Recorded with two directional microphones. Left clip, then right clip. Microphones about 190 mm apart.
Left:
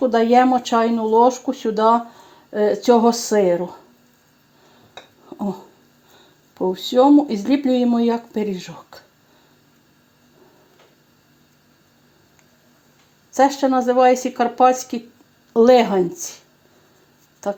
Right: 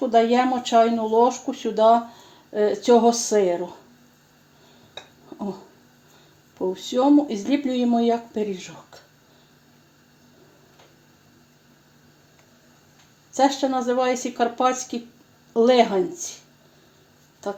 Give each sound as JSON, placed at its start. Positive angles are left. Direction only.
{"t": 0.0, "sound": "speech", "side_deg": 35}
{"t": 6.7, "sound": "speech", "side_deg": 35}
{"t": 13.3, "sound": "speech", "side_deg": 35}